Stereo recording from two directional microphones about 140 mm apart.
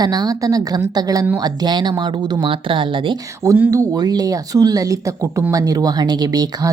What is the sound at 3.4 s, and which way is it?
Speech, 20° right (ahead or behind).